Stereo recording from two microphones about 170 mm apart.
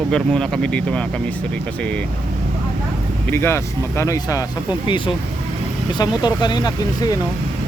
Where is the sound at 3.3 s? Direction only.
15° left (ahead or behind).